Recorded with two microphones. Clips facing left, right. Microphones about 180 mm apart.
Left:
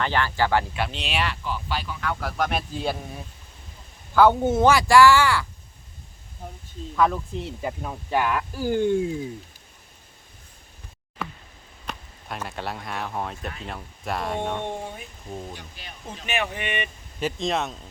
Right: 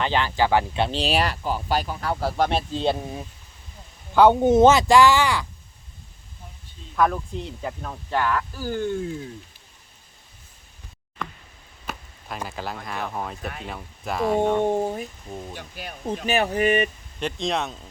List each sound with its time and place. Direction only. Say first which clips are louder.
0.0 s speech: right 2 dB; 15° right (ahead or behind)
0.7 s speech: right 6 dB; 30° right (ahead or behind)
6.9 s speech: even; centre (ahead or behind)
7.6 s speech: left 1 dB; 10° left (ahead or behind)
11.2 s a sound: left 1 dB; 5° left (ahead or behind)
11.9 s speech: right 1 dB; 5° right (ahead or behind)
14.6 s speech: right 9 dB; 40° right (ahead or behind)
15.3 s speech: even; centre (ahead or behind)
15.5 s speech: right 6 dB; 50° right (ahead or behind)
17.2 s speech: even; 5° left (ahead or behind)